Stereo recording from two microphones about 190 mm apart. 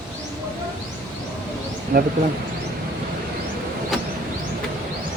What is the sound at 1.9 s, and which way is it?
Speech, 50° right (ahead or behind).